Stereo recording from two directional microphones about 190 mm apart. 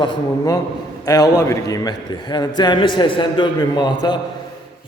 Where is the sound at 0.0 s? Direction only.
20° left (ahead or behind).